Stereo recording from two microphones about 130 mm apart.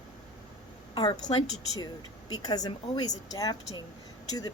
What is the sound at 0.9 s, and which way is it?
A woman's voice, 35° left (ahead or behind).